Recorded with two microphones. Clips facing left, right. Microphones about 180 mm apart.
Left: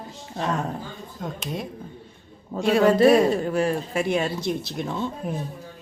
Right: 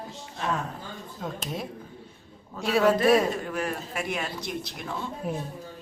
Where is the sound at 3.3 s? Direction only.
30° left (ahead or behind).